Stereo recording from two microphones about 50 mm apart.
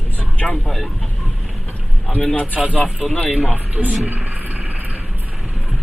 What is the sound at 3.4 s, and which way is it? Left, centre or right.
Speech, right.